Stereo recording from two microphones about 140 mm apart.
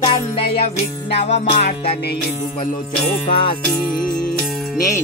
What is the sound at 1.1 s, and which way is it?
Music, 50° left (ahead or behind).